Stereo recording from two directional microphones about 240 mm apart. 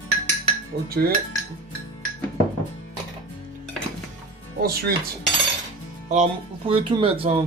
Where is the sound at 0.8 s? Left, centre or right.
Right.